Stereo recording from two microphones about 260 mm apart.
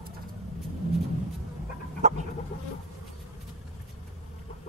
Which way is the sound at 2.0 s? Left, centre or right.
Right.